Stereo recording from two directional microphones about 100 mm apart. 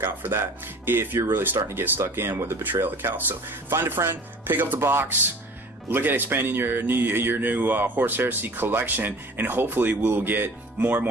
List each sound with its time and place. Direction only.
0.0 s speech: 25° right (ahead or behind)